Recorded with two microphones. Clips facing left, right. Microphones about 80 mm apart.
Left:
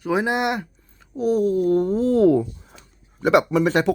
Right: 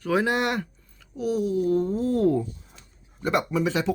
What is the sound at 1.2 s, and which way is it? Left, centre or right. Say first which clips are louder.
Speech: left 5 dB; left.